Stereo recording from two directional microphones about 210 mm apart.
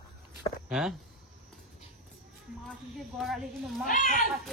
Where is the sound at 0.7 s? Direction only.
Centre (ahead or behind).